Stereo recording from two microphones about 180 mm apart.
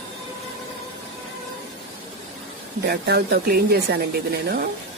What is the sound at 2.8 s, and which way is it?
Speech, 65° right (ahead or behind).